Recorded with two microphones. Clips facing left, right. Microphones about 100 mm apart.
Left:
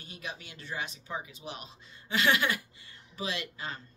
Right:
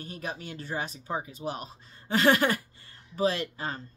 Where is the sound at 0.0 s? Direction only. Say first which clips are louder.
Right 6 dB; 45° right (ahead or behind).